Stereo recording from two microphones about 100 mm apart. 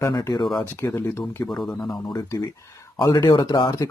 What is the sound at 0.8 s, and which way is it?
Speech, 25° left (ahead or behind).